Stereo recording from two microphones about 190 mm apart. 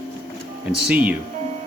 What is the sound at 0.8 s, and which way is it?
Speech, 5° right (ahead or behind).